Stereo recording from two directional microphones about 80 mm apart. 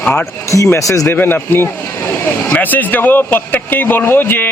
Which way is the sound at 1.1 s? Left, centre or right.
Left.